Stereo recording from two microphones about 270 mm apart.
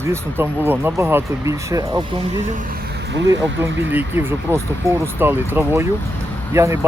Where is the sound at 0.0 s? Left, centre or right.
Centre.